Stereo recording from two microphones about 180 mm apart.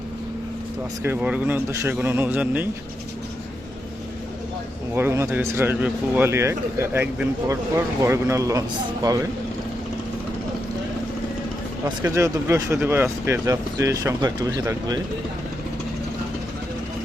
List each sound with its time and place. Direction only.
1.0 s speech: 10° right (ahead or behind)
4.9 s speech: 15° right (ahead or behind)
12.0 s speech: 15° right (ahead or behind)